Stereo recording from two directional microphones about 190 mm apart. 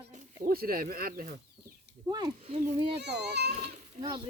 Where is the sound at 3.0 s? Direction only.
60° right (ahead or behind).